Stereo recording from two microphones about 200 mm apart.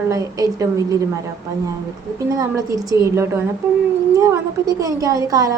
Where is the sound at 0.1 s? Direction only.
15° right (ahead or behind).